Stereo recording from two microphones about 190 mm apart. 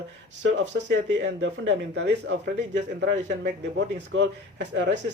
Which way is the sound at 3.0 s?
70° right (ahead or behind).